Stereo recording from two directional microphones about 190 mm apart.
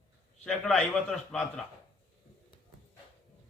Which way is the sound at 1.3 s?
Centre (ahead or behind).